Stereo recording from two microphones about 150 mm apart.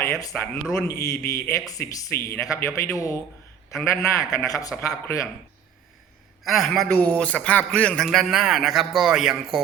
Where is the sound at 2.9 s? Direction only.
20° left (ahead or behind).